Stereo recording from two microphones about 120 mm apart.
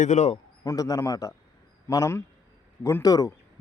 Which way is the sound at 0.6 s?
30° left (ahead or behind).